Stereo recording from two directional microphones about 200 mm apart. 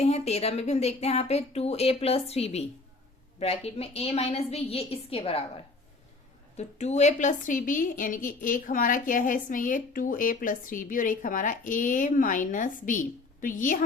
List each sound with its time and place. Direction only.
0.0 s a woman's voice: 30° left (ahead or behind)
6.6 s a woman's voice: 35° left (ahead or behind)